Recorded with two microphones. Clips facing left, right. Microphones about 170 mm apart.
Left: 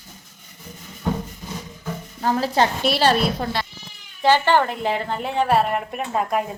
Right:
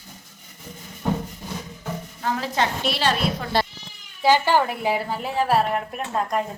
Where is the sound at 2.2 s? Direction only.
35° left (ahead or behind).